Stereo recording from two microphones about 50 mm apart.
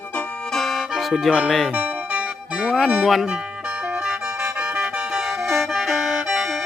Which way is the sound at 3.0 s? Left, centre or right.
Centre.